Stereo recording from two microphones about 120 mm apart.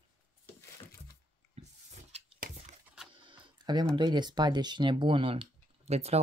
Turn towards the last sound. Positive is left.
turn(degrees=-60)  # may be behind; listen again after turning